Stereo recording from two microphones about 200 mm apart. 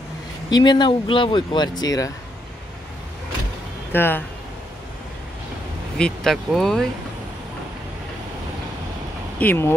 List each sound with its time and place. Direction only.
0.5 s speech: 20° left (ahead or behind)
3.9 s speech: 10° left (ahead or behind)
5.9 s speech: 5° left (ahead or behind)
9.4 s speech: 10° left (ahead or behind)